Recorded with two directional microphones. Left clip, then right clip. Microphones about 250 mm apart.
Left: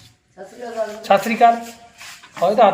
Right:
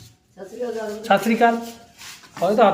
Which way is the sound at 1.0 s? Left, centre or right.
Centre.